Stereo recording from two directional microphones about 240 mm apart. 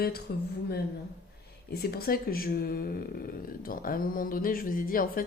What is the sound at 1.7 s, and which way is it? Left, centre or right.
A woman's voice, left.